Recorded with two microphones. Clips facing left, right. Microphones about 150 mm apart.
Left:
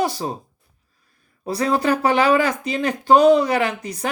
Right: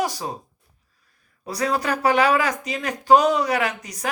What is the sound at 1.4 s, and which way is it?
Speech, 25° left (ahead or behind).